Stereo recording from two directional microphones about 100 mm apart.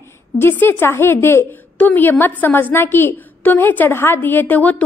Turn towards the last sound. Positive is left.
turn(degrees=15)  # may be behind; listen again after turning